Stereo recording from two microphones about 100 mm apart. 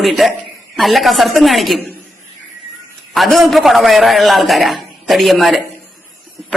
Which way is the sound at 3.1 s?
Centre (ahead or behind).